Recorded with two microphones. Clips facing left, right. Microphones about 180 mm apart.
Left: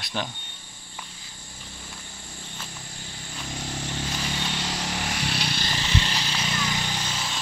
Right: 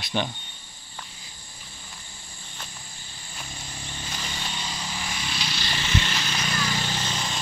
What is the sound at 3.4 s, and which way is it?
Vehicle, 75° left (ahead or behind).